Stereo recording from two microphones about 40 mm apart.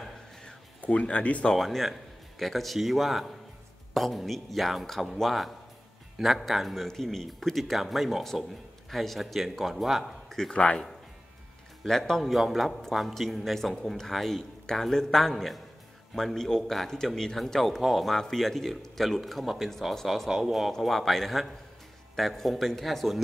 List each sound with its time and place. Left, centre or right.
0.7 s speech: left
1.5 s a man's voice: centre
6.1 s a man's voice: centre
10.0 s a sound: centre
10.5 s speech: left
11.8 s a man's voice: centre
18.1 s a man's voice: centre
19.4 s speech: centre
20.8 s a man's voice: centre